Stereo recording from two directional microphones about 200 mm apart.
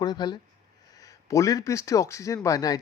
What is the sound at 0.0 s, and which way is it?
Speech, 20° left (ahead or behind).